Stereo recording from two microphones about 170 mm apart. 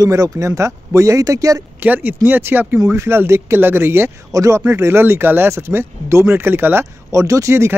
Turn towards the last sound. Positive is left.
turn(degrees=-15)  # may be behind; listen again after turning